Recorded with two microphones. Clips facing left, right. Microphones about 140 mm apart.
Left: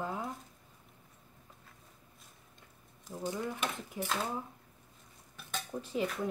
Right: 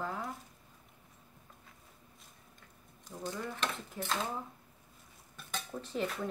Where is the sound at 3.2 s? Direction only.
15° left (ahead or behind).